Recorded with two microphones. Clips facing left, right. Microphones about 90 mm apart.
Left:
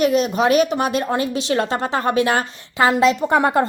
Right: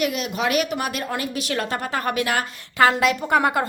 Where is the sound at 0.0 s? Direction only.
35° left (ahead or behind).